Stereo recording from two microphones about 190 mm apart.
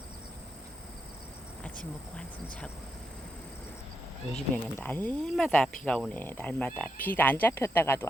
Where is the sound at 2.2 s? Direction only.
5° left (ahead or behind).